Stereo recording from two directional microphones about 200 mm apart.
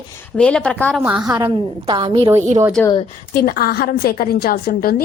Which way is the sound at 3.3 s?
50° left (ahead or behind).